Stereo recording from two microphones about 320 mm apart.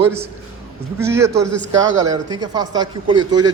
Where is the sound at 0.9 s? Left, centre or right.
Centre.